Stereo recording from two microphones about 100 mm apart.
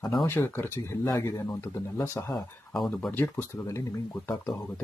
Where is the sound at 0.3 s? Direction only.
25° left (ahead or behind).